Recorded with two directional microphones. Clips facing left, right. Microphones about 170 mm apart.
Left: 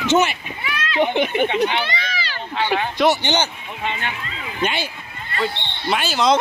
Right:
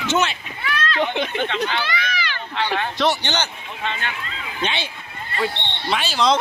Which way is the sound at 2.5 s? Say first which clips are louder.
Left 3 dB; 15° left (ahead or behind).